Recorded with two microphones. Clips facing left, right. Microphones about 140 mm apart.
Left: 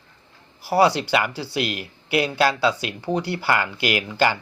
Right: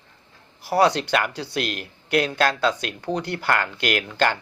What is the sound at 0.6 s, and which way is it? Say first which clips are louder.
Speech: left 1 dB; 5° left (ahead or behind).